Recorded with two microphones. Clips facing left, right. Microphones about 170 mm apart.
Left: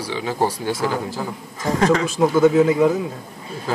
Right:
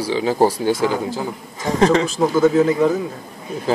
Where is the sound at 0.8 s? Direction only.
20° right (ahead or behind).